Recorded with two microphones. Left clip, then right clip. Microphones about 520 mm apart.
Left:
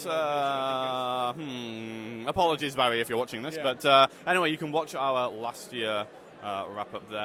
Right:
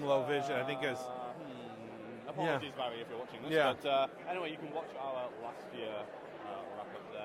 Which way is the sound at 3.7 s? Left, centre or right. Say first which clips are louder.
Left 11 dB; left.